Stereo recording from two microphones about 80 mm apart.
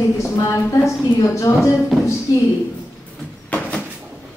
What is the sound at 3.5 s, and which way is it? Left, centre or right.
Cupboard open or close, centre.